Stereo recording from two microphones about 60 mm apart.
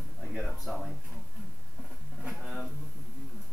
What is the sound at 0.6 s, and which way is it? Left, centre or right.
Speech, centre.